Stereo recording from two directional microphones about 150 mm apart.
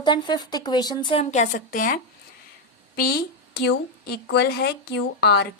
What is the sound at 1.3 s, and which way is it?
Speech, 60° left (ahead or behind).